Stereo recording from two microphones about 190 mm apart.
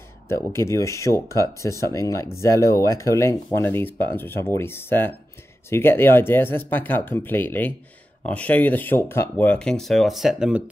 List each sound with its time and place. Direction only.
0.3 s speech: 15° left (ahead or behind); by 10.6 s centre (ahead or behind)